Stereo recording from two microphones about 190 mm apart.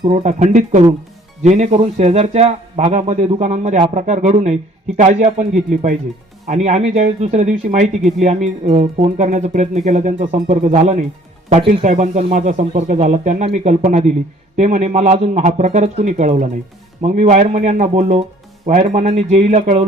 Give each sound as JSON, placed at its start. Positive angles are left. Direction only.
{"t": 0.1, "sound": "a man's voice", "side_deg": -35}